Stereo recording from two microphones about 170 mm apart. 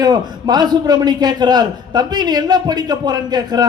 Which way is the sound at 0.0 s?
25° right (ahead or behind).